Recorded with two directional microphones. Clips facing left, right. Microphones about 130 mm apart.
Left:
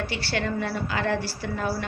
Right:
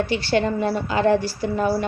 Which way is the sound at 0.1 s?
20° right (ahead or behind).